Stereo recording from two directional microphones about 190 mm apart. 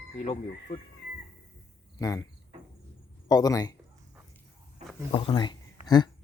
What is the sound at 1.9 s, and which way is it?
Speech, 20° left (ahead or behind).